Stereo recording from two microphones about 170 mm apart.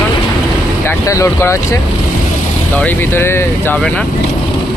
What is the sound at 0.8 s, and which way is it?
Speech, 15° left (ahead or behind).